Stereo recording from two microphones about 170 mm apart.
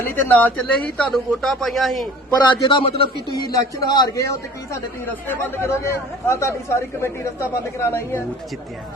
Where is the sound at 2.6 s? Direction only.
30° left (ahead or behind).